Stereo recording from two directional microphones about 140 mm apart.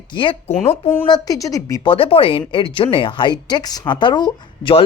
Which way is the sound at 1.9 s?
40° left (ahead or behind).